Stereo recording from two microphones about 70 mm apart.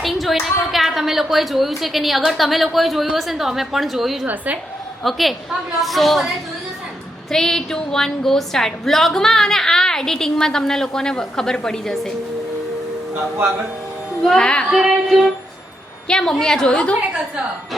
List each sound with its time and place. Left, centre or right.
0.0 s a woman's voice: centre
14.2 s speech: centre
14.4 s a woman's voice: centre
14.7 s a woman's voice: centre